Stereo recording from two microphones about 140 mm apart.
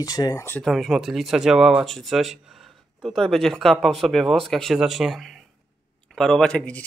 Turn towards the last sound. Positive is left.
turn(degrees=10)  # may be behind; listen again after turning